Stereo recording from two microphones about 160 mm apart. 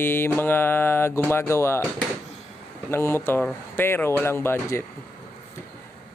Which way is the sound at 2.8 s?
15° left (ahead or behind).